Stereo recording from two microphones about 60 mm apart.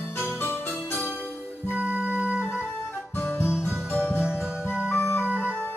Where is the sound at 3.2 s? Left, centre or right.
Left.